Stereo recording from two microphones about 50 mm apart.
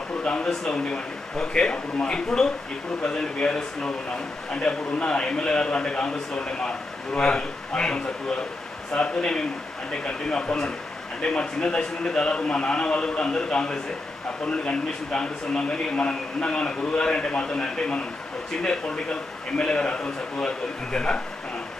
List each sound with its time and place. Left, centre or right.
0.2 s a man's voice: left
19.6 s a man's voice: left